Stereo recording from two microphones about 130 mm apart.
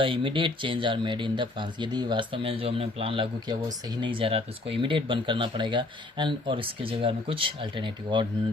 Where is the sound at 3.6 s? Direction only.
30° right (ahead or behind).